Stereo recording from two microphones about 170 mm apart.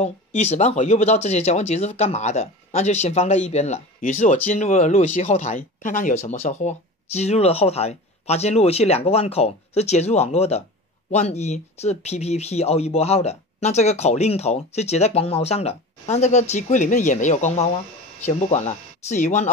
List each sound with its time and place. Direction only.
0.0 s speech: 40° left (ahead or behind)